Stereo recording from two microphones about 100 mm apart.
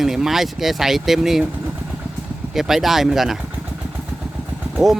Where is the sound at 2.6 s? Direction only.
5° right (ahead or behind).